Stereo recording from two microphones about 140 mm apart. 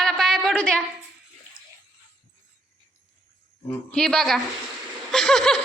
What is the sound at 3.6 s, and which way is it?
A child's voice, 10° left (ahead or behind).